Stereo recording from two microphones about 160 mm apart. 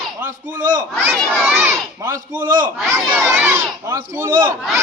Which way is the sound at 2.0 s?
20° right (ahead or behind).